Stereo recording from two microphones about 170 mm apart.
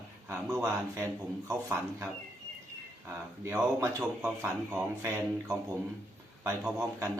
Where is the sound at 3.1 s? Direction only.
15° right (ahead or behind).